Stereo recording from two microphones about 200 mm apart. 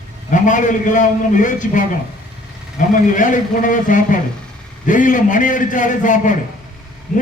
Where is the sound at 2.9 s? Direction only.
40° left (ahead or behind).